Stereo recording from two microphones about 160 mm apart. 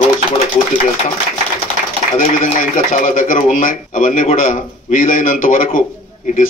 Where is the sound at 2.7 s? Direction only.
55° left (ahead or behind).